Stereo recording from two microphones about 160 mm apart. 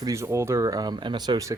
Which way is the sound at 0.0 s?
20° right (ahead or behind).